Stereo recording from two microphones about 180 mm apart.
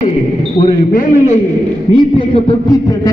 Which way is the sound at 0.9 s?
45° left (ahead or behind).